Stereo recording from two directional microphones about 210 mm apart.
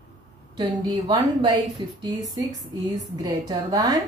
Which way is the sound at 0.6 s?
20° right (ahead or behind).